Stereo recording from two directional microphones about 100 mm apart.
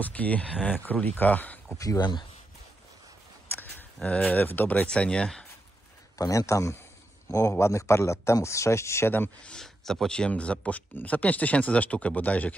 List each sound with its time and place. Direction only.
0.0 s speech: 15° left (ahead or behind)
2.0 s speech: 50° left (ahead or behind)
4.0 s speech: 10° left (ahead or behind)
6.1 s speech: 35° left (ahead or behind); by 12.5 s 15° left (ahead or behind)